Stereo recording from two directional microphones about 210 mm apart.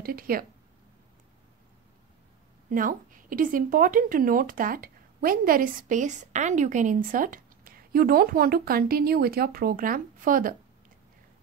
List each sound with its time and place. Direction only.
0.0 s speech: 45° right (ahead or behind)
2.7 s speech: 40° right (ahead or behind)